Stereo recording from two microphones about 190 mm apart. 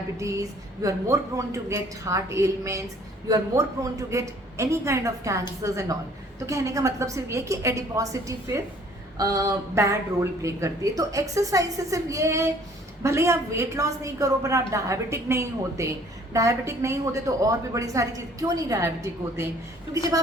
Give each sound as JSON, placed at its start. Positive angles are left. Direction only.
{"t": 0.2, "sound": "a woman's voice", "side_deg": -15}